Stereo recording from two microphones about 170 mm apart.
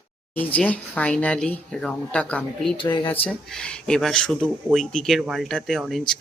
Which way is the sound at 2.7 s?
25° left (ahead or behind).